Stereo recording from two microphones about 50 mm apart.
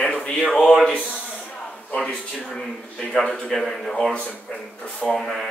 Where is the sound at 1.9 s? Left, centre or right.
Centre.